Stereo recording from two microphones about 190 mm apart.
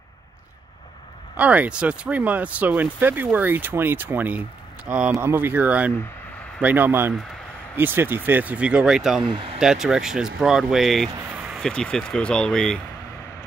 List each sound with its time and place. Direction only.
1.3 s speech: 10° right (ahead or behind)
9.2 s speech: 25° right (ahead or behind)
9.6 s speech: 5° right (ahead or behind)